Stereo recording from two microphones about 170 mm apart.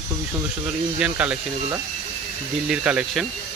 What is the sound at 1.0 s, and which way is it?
Speech, 5° right (ahead or behind).